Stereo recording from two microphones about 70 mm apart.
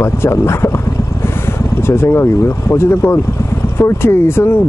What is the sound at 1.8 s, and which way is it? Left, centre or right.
Speech, left.